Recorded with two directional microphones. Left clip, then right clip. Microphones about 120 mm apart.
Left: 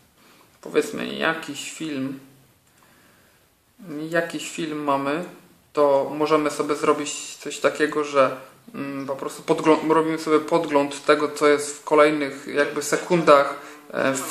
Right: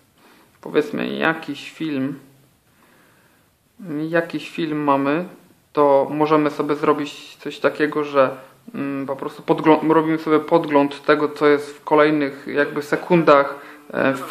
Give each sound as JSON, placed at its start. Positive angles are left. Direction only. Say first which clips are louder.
{"t": 0.6, "sound": "speech", "louder": "right 3 dB", "side_deg": -35}
{"t": 3.8, "sound": "speech", "louder": "right 3 dB", "side_deg": -35}